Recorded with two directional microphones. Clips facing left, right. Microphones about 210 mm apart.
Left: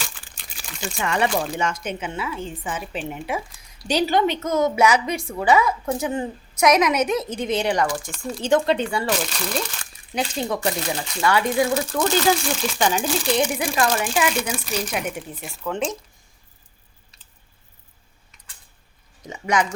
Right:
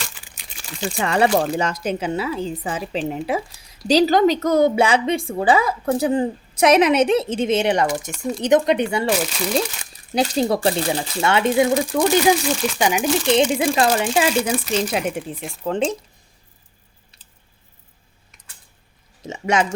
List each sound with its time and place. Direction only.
0.0 s a sound: 10° right (ahead or behind)
0.9 s a woman's voice: 35° right (ahead or behind)
9.2 s speech: 5° right (ahead or behind)
10.2 s a woman's voice: 35° right (ahead or behind); by 12.4 s 15° right (ahead or behind)
12.5 s speech: centre (ahead or behind)
12.8 s a woman's voice: 15° right (ahead or behind); by 16.0 s 30° right (ahead or behind)
19.2 s speech: 25° right (ahead or behind)